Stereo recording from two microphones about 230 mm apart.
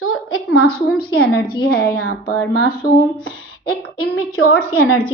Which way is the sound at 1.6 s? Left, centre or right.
Left.